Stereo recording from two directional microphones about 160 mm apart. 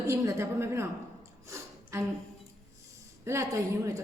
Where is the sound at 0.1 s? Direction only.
15° right (ahead or behind).